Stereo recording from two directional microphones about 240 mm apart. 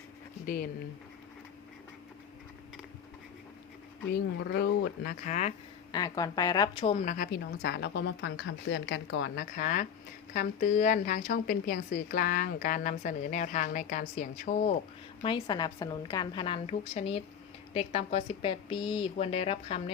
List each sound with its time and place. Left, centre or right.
0.4 s speech: left
4.1 s a woman's voice: left
5.9 s a woman's voice: centre; by 14.8 s left
15.2 s speech: centre